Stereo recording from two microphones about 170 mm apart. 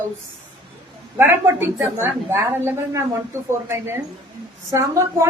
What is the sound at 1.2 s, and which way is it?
A woman's voice, 15° right (ahead or behind).